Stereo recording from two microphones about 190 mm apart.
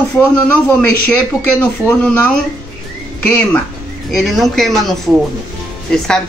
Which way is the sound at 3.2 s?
10° left (ahead or behind).